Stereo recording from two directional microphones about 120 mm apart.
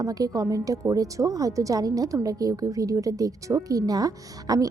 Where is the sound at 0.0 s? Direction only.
30° right (ahead or behind).